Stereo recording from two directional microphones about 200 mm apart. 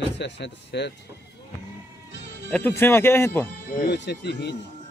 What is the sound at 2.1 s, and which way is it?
Music, 65° right (ahead or behind).